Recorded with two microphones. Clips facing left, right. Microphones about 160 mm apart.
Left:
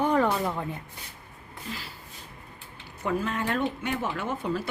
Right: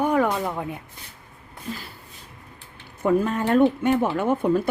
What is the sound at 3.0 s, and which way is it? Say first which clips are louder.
Speech: right 7 dB; 50° right (ahead or behind).